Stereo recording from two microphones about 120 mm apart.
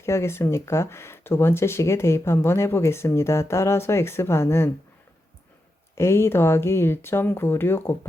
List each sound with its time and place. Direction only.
0.0 s speech: 20° left (ahead or behind)
6.0 s speech: 20° left (ahead or behind)